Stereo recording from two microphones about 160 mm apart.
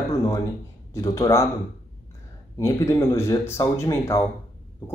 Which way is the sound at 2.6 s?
15° left (ahead or behind).